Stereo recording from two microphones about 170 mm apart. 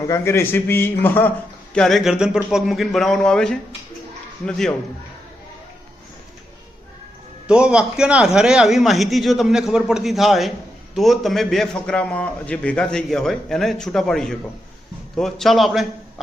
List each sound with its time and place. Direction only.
0.0 s a man's voice: 15° left (ahead or behind)
1.7 s a man's voice: centre (ahead or behind)
7.4 s a man's voice: 5° right (ahead or behind)